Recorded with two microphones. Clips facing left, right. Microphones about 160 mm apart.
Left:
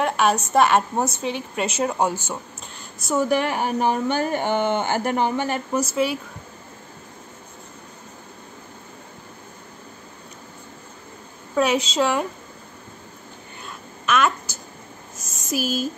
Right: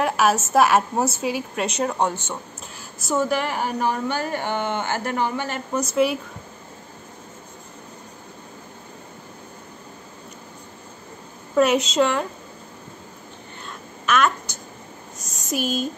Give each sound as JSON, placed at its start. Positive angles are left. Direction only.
{"t": 0.0, "sound": "a sound", "side_deg": -5}
{"t": 0.5, "sound": "a woman's voice", "side_deg": -5}
{"t": 3.2, "sound": "speech", "side_deg": 20}
{"t": 5.8, "sound": "a woman's voice", "side_deg": 0}
{"t": 11.5, "sound": "a woman's voice", "side_deg": 0}
{"t": 13.7, "sound": "a sound", "side_deg": 0}
{"t": 15.5, "sound": "a woman's voice", "side_deg": 5}